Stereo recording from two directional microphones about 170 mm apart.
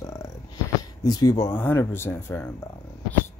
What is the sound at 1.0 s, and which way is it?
Speech, 25° left (ahead or behind).